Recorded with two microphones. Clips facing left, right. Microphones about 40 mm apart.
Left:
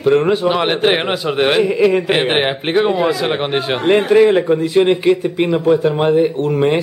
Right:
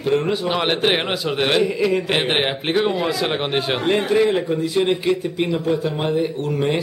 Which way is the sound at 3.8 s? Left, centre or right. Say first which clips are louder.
Left 8 dB; centre.